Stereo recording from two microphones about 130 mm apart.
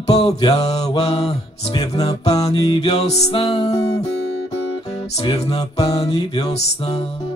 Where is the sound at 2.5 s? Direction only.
35° left (ahead or behind); by 3.4 s 50° left (ahead or behind).